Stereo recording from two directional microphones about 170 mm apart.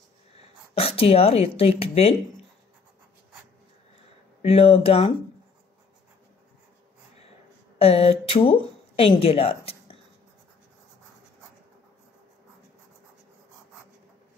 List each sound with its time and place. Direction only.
0.7 s speech: 35° left (ahead or behind)
4.4 s speech: 35° left (ahead or behind)
7.8 s speech: 35° left (ahead or behind)